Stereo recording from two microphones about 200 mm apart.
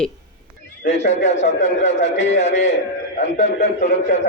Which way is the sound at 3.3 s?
35° left (ahead or behind).